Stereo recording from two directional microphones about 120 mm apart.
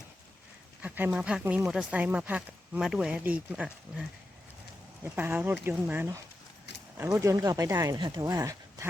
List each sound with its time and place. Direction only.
0.8 s a sound: 15° right (ahead or behind)
1.1 s speech: 10° right (ahead or behind)
5.0 s speech: 15° right (ahead or behind)
7.9 s speech: 45° right (ahead or behind)
8.3 s speech: 25° right (ahead or behind)